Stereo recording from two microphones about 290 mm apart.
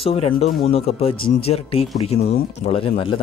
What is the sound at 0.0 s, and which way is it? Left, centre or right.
Speech, centre.